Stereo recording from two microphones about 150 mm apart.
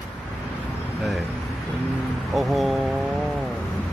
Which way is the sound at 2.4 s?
Centre (ahead or behind).